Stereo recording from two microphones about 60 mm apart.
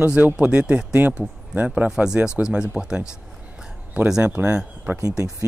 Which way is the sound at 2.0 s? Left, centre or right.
Centre.